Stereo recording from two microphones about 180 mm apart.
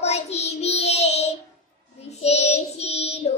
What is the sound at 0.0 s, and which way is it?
Child singing, 35° left (ahead or behind).